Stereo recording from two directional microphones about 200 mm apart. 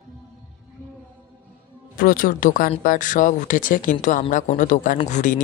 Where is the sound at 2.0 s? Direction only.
45° left (ahead or behind).